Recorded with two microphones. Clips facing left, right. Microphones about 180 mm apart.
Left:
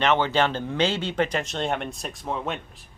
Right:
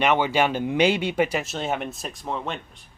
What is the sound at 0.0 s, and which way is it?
Speech, 10° right (ahead or behind).